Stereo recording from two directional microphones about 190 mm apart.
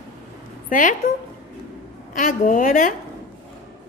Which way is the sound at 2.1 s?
45° left (ahead or behind).